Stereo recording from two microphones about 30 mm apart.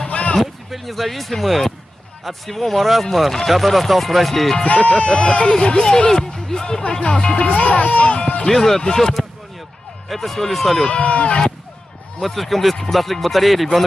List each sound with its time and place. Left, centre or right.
0.4 s a sound: centre
1.4 s speech: centre
4.6 s speech: left
5.5 s speech: left
6.8 s speech: left
7.5 s speech: left
8.5 s speech: centre
10.0 s speech: centre
10.9 s speech: left
12.2 s speech: centre